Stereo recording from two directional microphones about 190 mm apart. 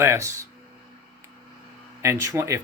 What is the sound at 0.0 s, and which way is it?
Speech, 15° right (ahead or behind).